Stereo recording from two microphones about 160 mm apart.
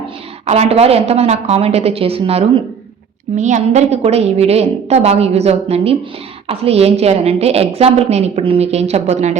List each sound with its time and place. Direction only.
0.4 s a woman's voice: 45° right (ahead or behind)
3.3 s a woman's voice: 50° right (ahead or behind)